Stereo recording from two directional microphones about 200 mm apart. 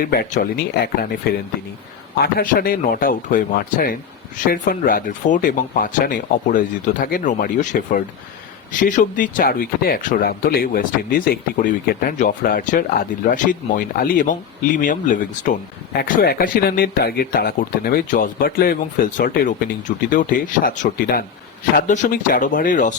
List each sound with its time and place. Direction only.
0.0 s speech: 45° left (ahead or behind)
2.1 s speech: 50° left (ahead or behind)